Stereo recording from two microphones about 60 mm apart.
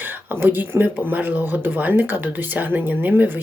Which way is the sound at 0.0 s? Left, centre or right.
Right.